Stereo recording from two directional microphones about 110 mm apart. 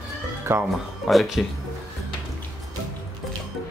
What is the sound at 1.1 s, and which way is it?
Speech, centre (ahead or behind).